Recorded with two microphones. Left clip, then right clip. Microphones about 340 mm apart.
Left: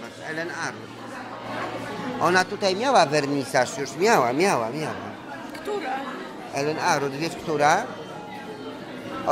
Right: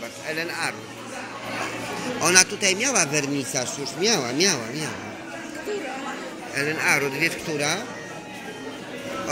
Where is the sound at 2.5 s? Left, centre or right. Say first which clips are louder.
Right 1 dB; left.